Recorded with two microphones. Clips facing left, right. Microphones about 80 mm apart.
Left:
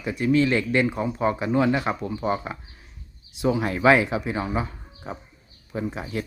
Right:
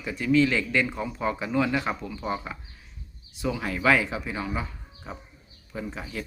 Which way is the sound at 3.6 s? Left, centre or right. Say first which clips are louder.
Left 4 dB; left.